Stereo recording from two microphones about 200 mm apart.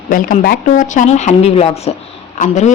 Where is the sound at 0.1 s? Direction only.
45° left (ahead or behind).